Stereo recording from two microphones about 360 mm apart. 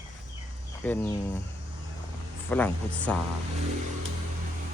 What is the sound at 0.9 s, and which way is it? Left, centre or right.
Speech, centre.